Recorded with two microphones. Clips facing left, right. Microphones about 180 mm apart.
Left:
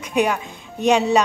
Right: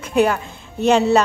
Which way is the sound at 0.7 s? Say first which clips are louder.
Right 2 dB; 15° left (ahead or behind).